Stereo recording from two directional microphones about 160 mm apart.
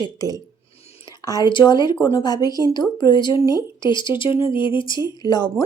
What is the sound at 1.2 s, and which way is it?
A woman's voice, 20° left (ahead or behind).